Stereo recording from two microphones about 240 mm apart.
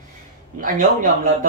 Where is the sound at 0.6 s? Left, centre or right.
Right.